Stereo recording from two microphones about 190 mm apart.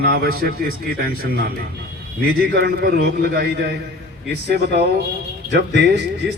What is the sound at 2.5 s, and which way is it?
A man's voice, 55° right (ahead or behind).